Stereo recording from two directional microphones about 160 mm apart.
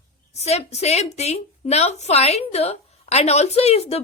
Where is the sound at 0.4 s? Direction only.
40° left (ahead or behind).